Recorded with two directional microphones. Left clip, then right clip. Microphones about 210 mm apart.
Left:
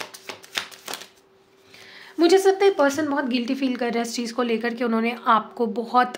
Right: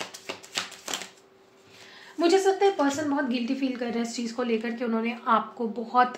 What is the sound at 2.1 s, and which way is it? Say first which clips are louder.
A woman's voice: left 5 dB; 55° left (ahead or behind).